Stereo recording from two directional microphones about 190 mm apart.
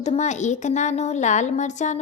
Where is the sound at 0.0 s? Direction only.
35° left (ahead or behind).